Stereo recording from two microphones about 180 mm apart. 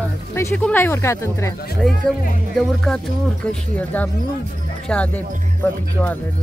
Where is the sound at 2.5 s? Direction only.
5° left (ahead or behind).